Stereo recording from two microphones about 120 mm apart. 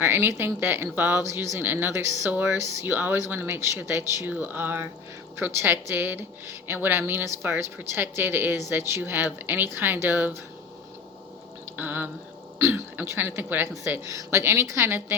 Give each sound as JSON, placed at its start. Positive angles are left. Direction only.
{"t": 0.0, "sound": "a woman's voice", "side_deg": -20}
{"t": 11.8, "sound": "a woman's voice", "side_deg": -15}